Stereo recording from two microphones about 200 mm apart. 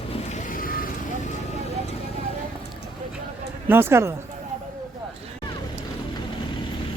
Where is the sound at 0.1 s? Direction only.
35° left (ahead or behind).